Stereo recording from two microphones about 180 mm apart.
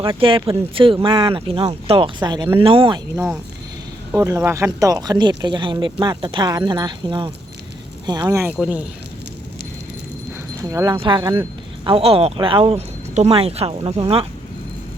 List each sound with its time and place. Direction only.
0.0 s speech: 30° right (ahead or behind)
4.1 s speech: 15° right (ahead or behind)
8.5 s speech: centre (ahead or behind)
10.6 s speech: 20° right (ahead or behind)